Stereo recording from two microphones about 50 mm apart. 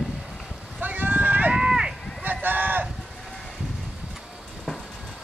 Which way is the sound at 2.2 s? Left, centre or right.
Right.